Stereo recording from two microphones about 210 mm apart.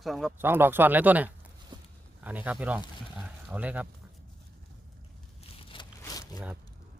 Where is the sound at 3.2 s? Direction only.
5° right (ahead or behind).